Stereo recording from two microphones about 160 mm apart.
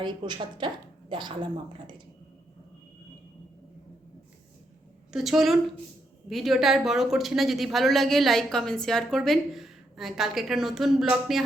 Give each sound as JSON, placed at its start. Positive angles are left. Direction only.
{"t": 0.0, "sound": "speech", "side_deg": -30}
{"t": 5.1, "sound": "speech", "side_deg": 0}